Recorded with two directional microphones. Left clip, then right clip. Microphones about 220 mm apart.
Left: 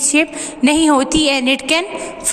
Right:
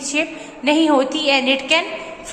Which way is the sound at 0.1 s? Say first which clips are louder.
Left 4 dB; 50° left (ahead or behind).